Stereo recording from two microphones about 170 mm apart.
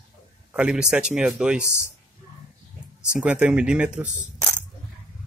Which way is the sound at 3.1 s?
5° right (ahead or behind).